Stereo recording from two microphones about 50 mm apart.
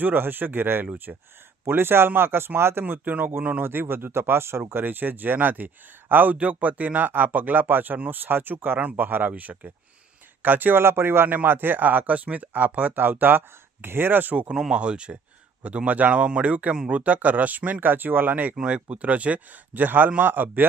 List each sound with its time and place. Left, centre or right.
0.0 s speech: right
1.1 s speech: centre
1.6 s speech: right
2.8 s speech: right
3.6 s speech: right
4.8 s speech: right
8.2 s speech: right
10.8 s speech: right
11.3 s speech: right
14.7 s speech: right
18.5 s speech: right